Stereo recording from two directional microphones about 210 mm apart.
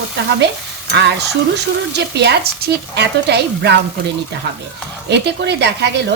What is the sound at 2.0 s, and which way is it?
A woman's voice, 55° right (ahead or behind).